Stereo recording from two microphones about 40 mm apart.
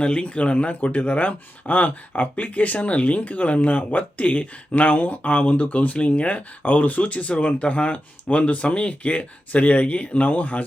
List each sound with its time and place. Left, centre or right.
0.0 s speech: left